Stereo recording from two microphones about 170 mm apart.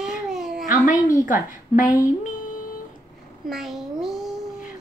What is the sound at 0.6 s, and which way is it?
A woman's voice, 50° left (ahead or behind).